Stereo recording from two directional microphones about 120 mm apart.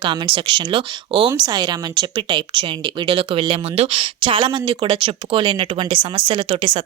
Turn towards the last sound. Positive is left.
turn(degrees=-45)  # may be behind; listen again after turning